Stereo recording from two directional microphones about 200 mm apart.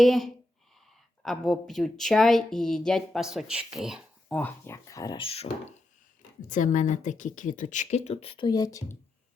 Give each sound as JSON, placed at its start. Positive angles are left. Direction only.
{"t": 0.0, "sound": "a woman's voice", "side_deg": 0}